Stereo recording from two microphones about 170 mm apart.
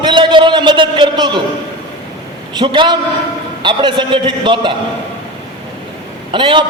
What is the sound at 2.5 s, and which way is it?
A man's voice, 25° right (ahead or behind).